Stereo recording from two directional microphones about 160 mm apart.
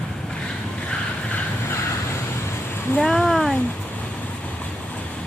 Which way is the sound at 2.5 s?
5° left (ahead or behind).